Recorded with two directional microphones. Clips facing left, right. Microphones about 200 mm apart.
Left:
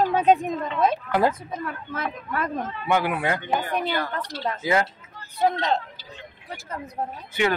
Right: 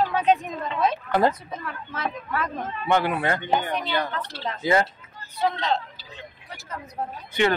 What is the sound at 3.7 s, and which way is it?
A woman's voice, 50° left (ahead or behind).